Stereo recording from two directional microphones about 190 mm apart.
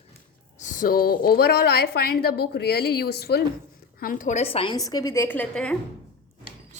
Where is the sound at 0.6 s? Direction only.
40° left (ahead or behind).